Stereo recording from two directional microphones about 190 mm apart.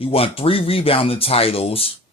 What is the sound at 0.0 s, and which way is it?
Speech, 30° left (ahead or behind).